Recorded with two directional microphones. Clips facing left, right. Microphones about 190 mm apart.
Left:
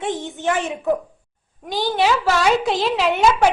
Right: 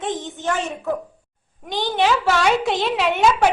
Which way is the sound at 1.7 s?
5° left (ahead or behind).